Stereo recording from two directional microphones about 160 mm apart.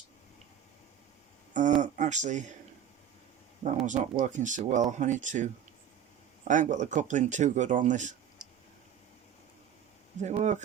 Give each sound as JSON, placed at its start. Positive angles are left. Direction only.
{"t": 1.5, "sound": "a sound", "side_deg": -50}
{"t": 3.8, "sound": "speech", "side_deg": -50}
{"t": 6.5, "sound": "speech", "side_deg": -50}
{"t": 10.2, "sound": "speech", "side_deg": -45}